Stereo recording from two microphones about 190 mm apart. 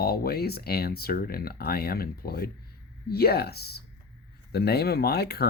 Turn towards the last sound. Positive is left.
turn(degrees=55)  # may be behind; listen again after turning